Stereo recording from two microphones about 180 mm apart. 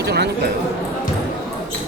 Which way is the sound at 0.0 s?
65° right (ahead or behind).